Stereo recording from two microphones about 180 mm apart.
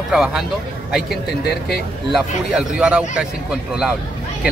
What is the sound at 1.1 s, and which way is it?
Speech, 60° left (ahead or behind).